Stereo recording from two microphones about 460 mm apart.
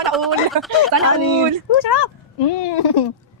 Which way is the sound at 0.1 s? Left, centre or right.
Centre.